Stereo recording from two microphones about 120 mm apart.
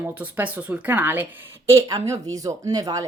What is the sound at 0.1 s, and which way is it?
A woman's voice, 15° right (ahead or behind).